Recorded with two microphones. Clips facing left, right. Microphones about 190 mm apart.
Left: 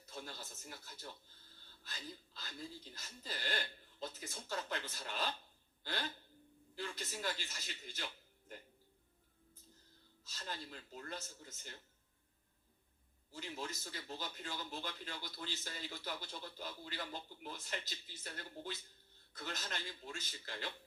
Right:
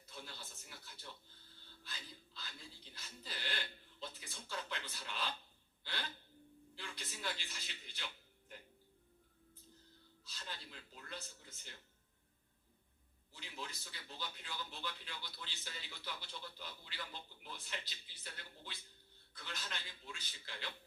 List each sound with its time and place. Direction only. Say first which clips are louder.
0.1 s a man's voice: left 4 dB; 45° left (ahead or behind)
10.2 s a man's voice: left 4 dB; 45° left (ahead or behind)
13.3 s a man's voice: left 5 dB; 45° left (ahead or behind)